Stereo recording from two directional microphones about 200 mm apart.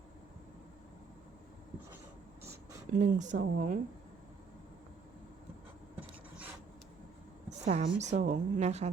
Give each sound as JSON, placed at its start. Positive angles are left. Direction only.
{"t": 2.9, "sound": "a woman's voice", "side_deg": -35}
{"t": 6.0, "sound": "a sound", "side_deg": -10}
{"t": 7.6, "sound": "a woman's voice", "side_deg": -35}